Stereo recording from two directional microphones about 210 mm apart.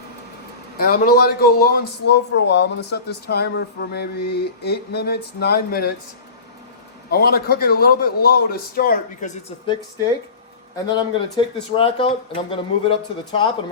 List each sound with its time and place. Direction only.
0.8 s speech: 45° left (ahead or behind)
7.1 s speech: 45° left (ahead or behind)
10.9 s speech: 25° left (ahead or behind)